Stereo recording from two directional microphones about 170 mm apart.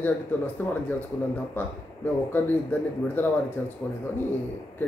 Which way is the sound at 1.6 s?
10° left (ahead or behind).